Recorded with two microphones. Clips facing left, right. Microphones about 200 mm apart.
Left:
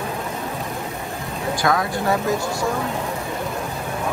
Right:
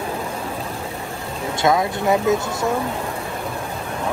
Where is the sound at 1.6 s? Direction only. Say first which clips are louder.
Right 3 dB; 20° right (ahead or behind).